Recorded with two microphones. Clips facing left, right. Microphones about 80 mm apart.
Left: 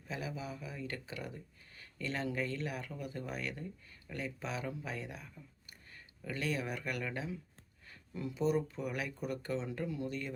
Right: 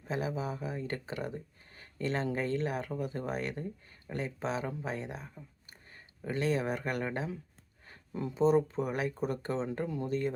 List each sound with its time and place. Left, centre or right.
0.0 s speech: right